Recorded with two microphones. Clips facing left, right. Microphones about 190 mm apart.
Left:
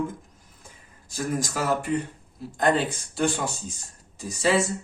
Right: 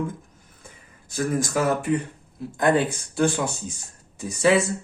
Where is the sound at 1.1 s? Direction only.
60° right (ahead or behind).